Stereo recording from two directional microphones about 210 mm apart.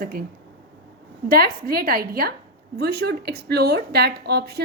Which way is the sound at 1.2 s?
45° right (ahead or behind).